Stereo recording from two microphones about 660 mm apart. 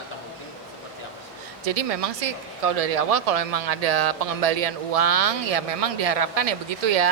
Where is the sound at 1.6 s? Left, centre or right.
Right.